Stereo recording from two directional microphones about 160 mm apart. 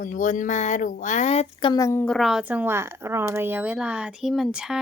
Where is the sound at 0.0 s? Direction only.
50° left (ahead or behind).